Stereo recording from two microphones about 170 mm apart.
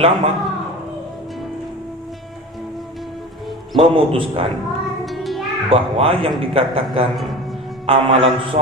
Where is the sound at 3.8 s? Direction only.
30° right (ahead or behind).